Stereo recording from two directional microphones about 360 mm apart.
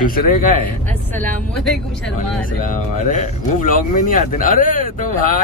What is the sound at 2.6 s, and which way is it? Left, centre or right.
Speech, left.